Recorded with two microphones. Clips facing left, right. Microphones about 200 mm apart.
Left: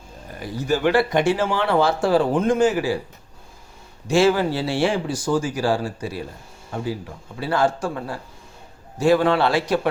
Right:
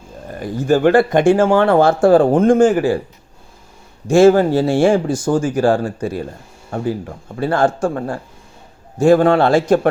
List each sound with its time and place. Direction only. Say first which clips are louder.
0.3 s speech: right 7 dB; 50° right (ahead or behind)
4.0 s speech: right 8 dB; 50° right (ahead or behind)